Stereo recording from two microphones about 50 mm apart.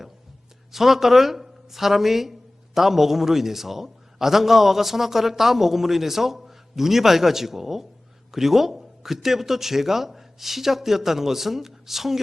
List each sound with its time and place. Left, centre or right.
0.7 s speech: centre